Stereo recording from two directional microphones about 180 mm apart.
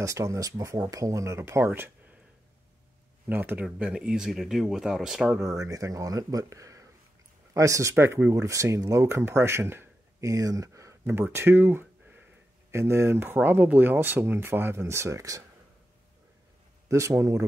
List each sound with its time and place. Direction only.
0.0 s speech: 15° right (ahead or behind)
3.3 s speech: 10° right (ahead or behind)
5.4 s speech: 20° right (ahead or behind)
16.9 s speech: 15° right (ahead or behind)